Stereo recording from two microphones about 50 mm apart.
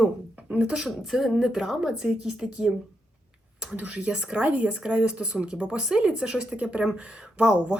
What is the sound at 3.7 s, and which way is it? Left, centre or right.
Speech, right.